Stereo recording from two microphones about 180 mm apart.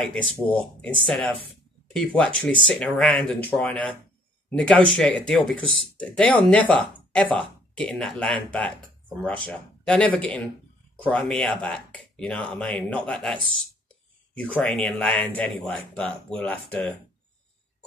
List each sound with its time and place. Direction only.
0.1 s speech: 5° left (ahead or behind)